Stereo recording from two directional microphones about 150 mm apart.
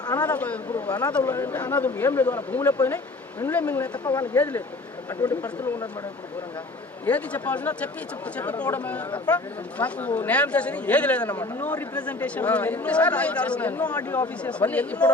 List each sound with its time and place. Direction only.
0.3 s speech: 10° left (ahead or behind)
4.0 s speech: 30° left (ahead or behind)
4.4 s speech: 10° left (ahead or behind)
7.0 s speech: 10° left (ahead or behind)